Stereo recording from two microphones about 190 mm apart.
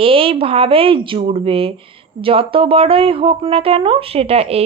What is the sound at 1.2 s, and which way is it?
Speech, 30° right (ahead or behind).